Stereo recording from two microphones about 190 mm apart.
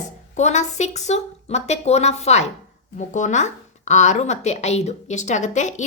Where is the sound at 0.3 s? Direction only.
35° left (ahead or behind).